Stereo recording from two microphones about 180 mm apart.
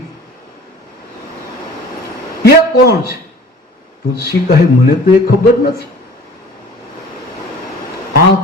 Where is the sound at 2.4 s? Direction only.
60° left (ahead or behind).